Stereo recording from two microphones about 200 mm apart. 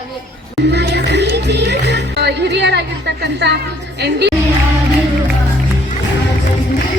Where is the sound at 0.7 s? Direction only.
55° right (ahead or behind).